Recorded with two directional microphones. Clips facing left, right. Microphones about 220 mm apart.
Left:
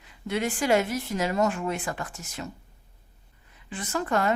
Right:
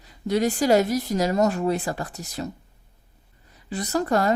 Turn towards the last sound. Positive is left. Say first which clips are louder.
# right 4 dB
turn(degrees=-40)  # may be behind; listen again after turning